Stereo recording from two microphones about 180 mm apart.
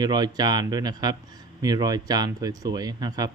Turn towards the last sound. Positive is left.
turn(degrees=-20)  # may be behind; listen again after turning